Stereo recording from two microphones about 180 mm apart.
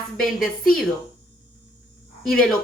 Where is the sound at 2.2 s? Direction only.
5° left (ahead or behind).